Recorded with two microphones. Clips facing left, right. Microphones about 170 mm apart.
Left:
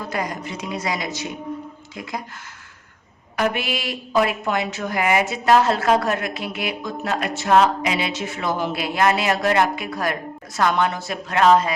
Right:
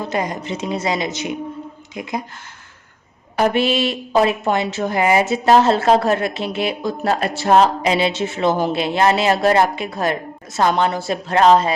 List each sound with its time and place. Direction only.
0.0 s speech: 25° right (ahead or behind)
3.3 s speech: 30° right (ahead or behind)